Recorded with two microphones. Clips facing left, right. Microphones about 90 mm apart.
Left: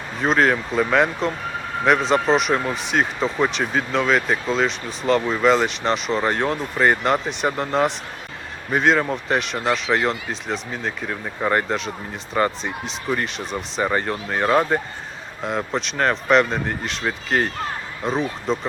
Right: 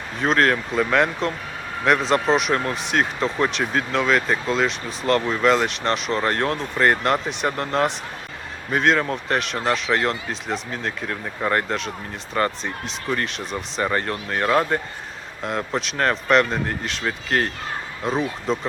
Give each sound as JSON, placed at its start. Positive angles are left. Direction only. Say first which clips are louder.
{"t": 0.2, "sound": "speech", "louder": "left 1 dB", "side_deg": 0}